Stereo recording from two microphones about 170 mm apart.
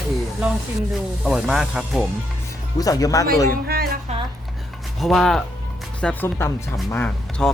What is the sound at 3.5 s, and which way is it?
Speech, 65° right (ahead or behind).